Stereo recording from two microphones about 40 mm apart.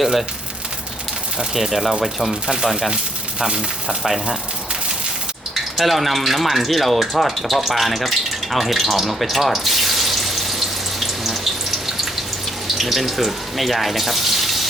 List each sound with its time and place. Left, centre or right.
0.0 s speech: centre
1.4 s speech: centre
3.4 s speech: centre
4.0 s speech: centre
5.7 s a sound: centre
12.7 s speech: centre